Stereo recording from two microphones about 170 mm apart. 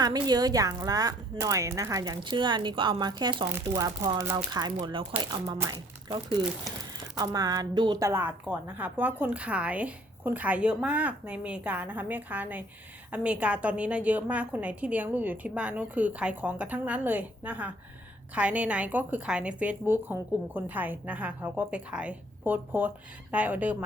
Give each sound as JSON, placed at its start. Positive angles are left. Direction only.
{"t": 0.0, "sound": "a woman's voice", "side_deg": -25}